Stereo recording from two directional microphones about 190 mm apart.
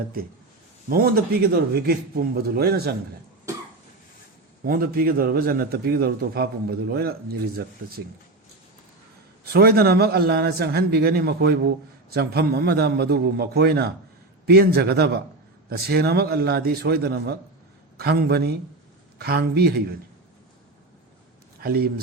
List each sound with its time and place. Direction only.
0.9 s a man's voice: 50° right (ahead or behind)
4.6 s a man's voice: 50° right (ahead or behind)
9.5 s a man's voice: 55° right (ahead or behind)
21.6 s a man's voice: 55° right (ahead or behind)